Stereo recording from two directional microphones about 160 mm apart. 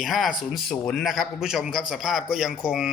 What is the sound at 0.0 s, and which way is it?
A man's voice, centre (ahead or behind).